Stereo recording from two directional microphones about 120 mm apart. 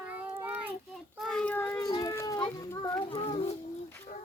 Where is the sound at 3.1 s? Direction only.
50° left (ahead or behind).